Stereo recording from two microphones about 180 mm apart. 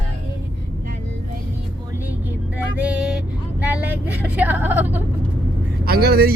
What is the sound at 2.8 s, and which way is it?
Vehicle, 5° right (ahead or behind).